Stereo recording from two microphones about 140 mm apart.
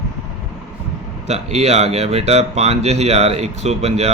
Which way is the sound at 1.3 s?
50° right (ahead or behind).